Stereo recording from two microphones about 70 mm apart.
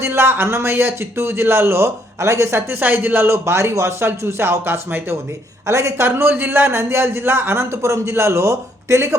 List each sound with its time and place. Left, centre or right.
0.0 s a man's voice: right
2.6 s a man's voice: right
5.6 s a man's voice: right